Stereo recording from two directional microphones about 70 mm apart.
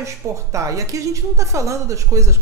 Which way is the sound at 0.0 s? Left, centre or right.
Right.